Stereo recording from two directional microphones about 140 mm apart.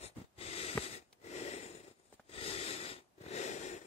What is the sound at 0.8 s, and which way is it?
Snort, 50° left (ahead or behind).